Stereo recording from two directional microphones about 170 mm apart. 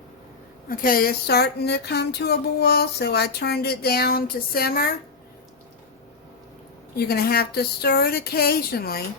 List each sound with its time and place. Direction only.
0.7 s speech: 55° left (ahead or behind)
6.9 s speech: 65° left (ahead or behind)